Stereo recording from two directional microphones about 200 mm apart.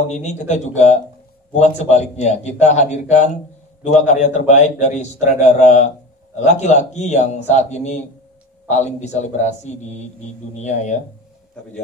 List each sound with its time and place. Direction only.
0.0 s a man's voice: 35° left (ahead or behind)